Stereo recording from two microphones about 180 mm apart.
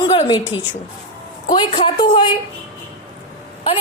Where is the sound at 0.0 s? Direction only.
25° left (ahead or behind).